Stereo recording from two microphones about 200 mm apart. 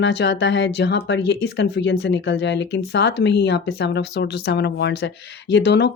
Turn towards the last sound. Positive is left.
turn(degrees=60)  # may be behind; listen again after turning